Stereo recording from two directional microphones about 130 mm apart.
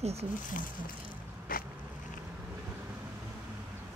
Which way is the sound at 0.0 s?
55° right (ahead or behind).